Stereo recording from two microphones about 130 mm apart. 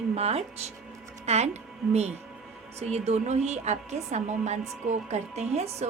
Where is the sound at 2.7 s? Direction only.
55° right (ahead or behind).